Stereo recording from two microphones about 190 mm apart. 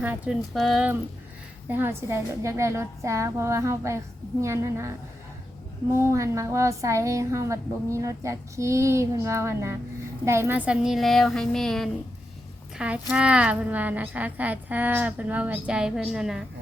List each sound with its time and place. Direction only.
0.0 s a woman's voice: 5° right (ahead or behind)